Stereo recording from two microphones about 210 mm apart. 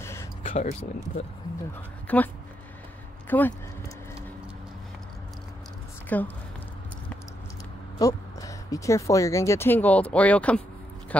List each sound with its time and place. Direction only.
0.0 s a sound: 10° left (ahead or behind)
0.4 s a sound: 25° left (ahead or behind)
2.1 s speech: 10° left (ahead or behind)
3.3 s speech: 10° left (ahead or behind)
6.0 s speech: 10° left (ahead or behind)
8.0 s speech: 15° left (ahead or behind)